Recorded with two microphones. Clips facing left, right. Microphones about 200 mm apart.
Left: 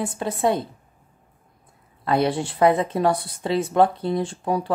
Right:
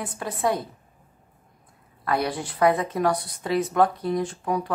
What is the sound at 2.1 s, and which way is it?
Speech, 25° left (ahead or behind).